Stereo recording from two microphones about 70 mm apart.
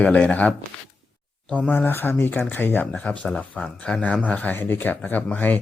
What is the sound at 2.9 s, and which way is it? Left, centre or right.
Speech, centre.